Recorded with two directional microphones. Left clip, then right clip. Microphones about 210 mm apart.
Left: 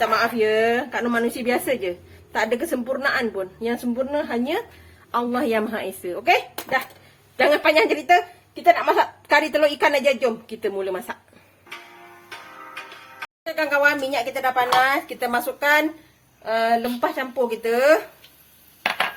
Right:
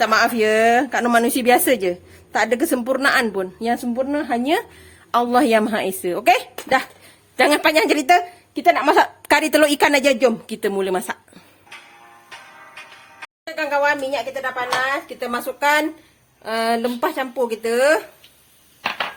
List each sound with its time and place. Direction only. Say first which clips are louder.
0.0 s a woman's voice: right 3 dB; 55° right (ahead or behind)
13.4 s speech: even; 5° right (ahead or behind); by 15.1 s 10° left (ahead or behind)
15.2 s speech: right 1 dB; 5° right (ahead or behind)
16.4 s speech: even; 25° right (ahead or behind); by 18.0 s 10° right (ahead or behind)